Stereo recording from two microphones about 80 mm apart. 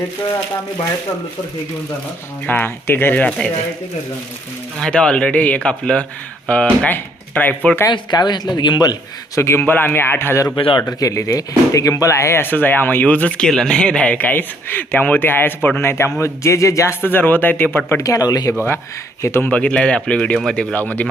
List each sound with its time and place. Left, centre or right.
2.5 s speech: left
3.2 s a man's voice: centre
4.8 s a man's voice: centre
7.9 s a man's voice: left
9.4 s speech: left
10.5 s speech: left
10.8 s speech: left
17.0 s speech: left
18.0 s speech: left
19.2 s speech: left
19.5 s a man's voice: centre